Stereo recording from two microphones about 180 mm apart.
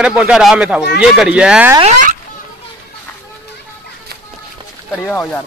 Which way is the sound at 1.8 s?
40° right (ahead or behind).